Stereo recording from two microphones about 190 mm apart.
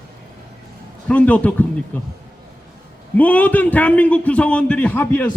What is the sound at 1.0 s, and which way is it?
A man's voice, 5° left (ahead or behind).